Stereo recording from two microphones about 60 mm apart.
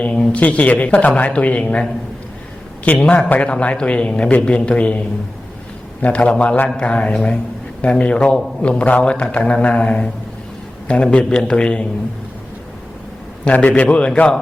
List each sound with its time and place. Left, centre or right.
0.0 s a man's voice: left
13.4 s a man's voice: left